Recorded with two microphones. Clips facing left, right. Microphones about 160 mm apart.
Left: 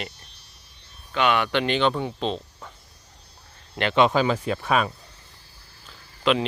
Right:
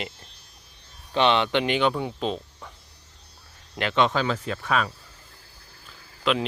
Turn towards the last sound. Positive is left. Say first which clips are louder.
# left 3 dB
turn(degrees=0)  # may be behind; listen again after turning